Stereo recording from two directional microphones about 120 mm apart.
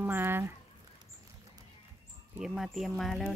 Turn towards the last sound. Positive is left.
turn(degrees=5)  # may be behind; listen again after turning